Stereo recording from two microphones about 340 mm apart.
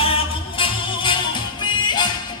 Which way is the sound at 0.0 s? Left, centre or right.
Centre.